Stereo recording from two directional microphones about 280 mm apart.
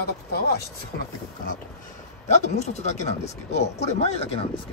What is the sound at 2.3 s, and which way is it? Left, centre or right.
Speech, left.